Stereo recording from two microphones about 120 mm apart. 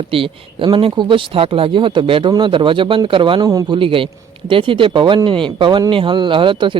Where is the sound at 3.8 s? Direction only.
45° right (ahead or behind).